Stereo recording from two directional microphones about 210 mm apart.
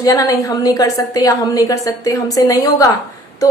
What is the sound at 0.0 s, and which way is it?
A woman's voice, 15° left (ahead or behind).